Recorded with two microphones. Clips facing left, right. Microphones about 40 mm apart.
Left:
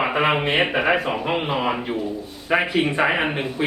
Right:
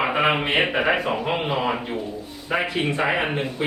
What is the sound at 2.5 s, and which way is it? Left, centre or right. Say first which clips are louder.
Speech: left 3 dB; centre.